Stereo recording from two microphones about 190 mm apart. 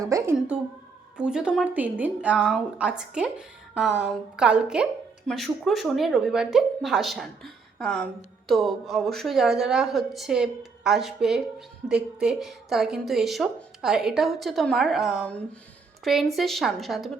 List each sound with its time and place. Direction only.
0.0 s a woman's voice: 15° right (ahead or behind)
0.3 s a woman's voice: 5° right (ahead or behind)